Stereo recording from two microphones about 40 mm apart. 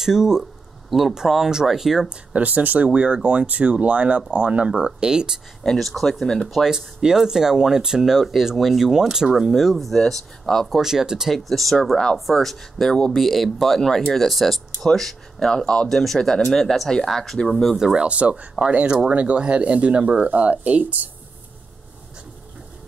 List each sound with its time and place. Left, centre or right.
0.0 s speech: centre
0.4 s a sound: centre
1.3 s speech: centre
2.3 s speech: right; by 5.4 s centre
5.6 s speech: centre
6.5 s speech: centre
9.7 s speech: centre
10.7 s speech: centre
11.3 s speech: centre
17.9 s speech: right